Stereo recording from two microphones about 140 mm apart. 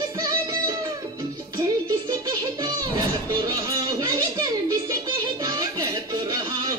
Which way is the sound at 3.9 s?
25° right (ahead or behind).